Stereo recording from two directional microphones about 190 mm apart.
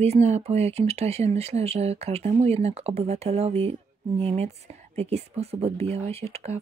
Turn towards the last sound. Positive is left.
turn(degrees=-35)  # may be behind; listen again after turning